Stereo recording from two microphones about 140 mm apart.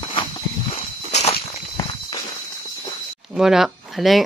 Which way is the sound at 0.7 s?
50° left (ahead or behind).